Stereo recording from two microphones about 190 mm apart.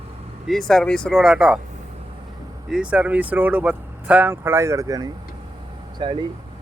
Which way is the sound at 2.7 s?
5° right (ahead or behind).